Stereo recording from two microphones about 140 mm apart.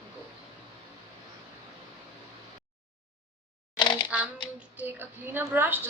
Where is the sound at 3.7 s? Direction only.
35° left (ahead or behind).